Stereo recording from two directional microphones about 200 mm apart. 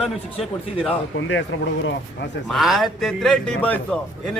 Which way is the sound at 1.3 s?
65° left (ahead or behind).